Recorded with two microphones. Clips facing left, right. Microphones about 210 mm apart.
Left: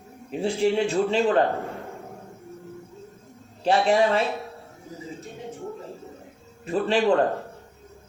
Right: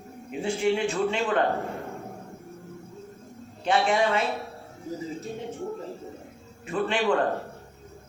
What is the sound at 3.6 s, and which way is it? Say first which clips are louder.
Speech: left 3 dB; 35° left (ahead or behind).